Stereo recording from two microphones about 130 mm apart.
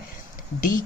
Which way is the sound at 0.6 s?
90° left.